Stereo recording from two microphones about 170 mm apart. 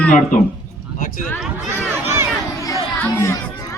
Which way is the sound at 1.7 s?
15° right (ahead or behind).